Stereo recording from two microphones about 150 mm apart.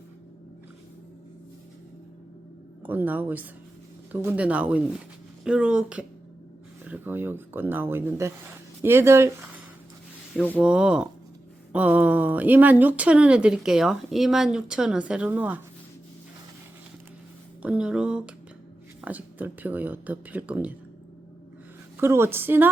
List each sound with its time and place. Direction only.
2.8 s speech: 10° right (ahead or behind)
10.4 s speech: 10° right (ahead or behind)
17.6 s speech: 5° right (ahead or behind)
22.0 s speech: 15° right (ahead or behind)